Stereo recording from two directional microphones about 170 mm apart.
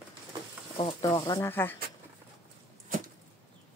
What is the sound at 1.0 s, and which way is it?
Speech, 20° left (ahead or behind).